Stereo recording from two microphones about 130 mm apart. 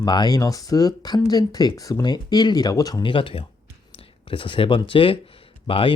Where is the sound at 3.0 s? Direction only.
40° left (ahead or behind).